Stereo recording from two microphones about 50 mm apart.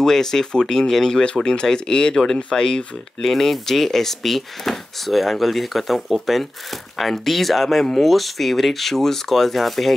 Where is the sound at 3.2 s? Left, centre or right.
Centre.